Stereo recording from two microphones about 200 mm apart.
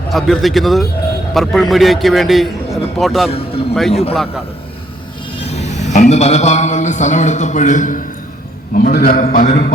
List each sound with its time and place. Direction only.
0.1 s a man's voice: centre (ahead or behind)
3.2 s speech: 30° left (ahead or behind)
3.8 s a man's voice: centre (ahead or behind)
5.5 s a man's voice: 35° left (ahead or behind)